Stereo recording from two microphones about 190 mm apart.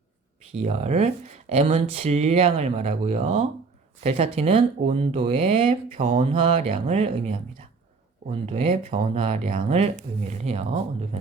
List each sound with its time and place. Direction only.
0.5 s speech: 35° right (ahead or behind)